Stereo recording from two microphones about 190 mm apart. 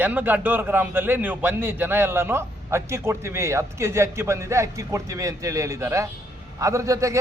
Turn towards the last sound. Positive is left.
turn(degrees=-15)  # may be behind; listen again after turning